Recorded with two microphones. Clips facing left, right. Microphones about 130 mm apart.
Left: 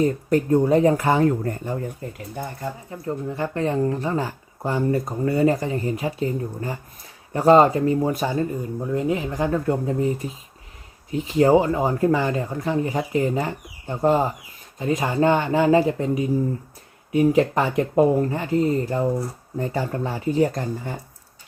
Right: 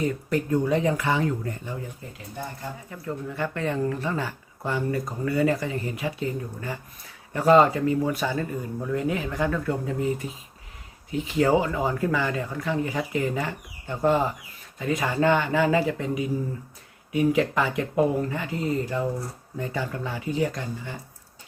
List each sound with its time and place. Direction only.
0.0 s speech: 40° left (ahead or behind)
2.9 s speech: 30° left (ahead or behind)